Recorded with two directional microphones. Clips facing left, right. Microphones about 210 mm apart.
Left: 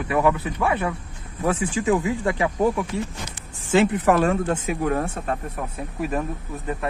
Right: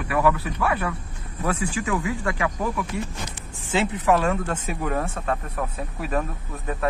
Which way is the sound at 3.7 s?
55° left (ahead or behind).